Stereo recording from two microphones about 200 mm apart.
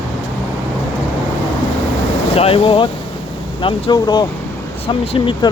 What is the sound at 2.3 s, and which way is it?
Speech, 30° left (ahead or behind).